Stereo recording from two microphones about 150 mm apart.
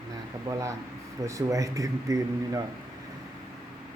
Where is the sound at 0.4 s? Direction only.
20° right (ahead or behind).